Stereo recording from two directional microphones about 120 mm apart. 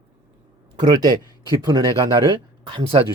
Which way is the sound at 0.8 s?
35° right (ahead or behind).